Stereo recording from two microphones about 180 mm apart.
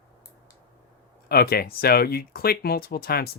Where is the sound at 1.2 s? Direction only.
60° left (ahead or behind).